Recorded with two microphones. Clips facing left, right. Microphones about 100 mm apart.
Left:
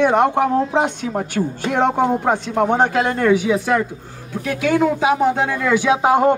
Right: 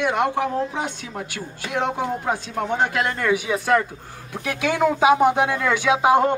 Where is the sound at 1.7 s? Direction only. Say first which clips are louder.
Left 6 dB; 50° left (ahead or behind).